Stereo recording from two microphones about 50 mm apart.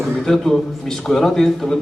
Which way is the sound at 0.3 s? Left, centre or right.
Centre.